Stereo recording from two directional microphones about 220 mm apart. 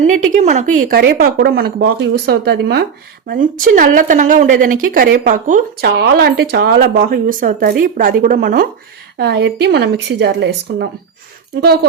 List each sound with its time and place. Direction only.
0.0 s a woman's voice: 35° right (ahead or behind)